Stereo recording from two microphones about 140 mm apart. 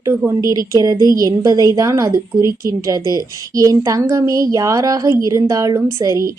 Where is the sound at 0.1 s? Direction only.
20° right (ahead or behind).